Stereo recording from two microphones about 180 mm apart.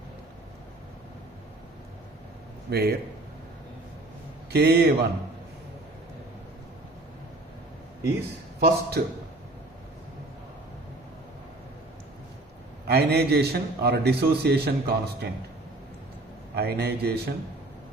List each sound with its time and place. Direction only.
2.6 s a man's voice: 60° right (ahead or behind)
4.5 s a man's voice: 65° right (ahead or behind)
8.6 s a man's voice: 60° right (ahead or behind)
12.9 s a man's voice: 60° right (ahead or behind)
16.6 s a man's voice: 60° right (ahead or behind)